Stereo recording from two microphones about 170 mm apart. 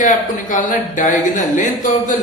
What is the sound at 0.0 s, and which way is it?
A woman's voice, 50° left (ahead or behind).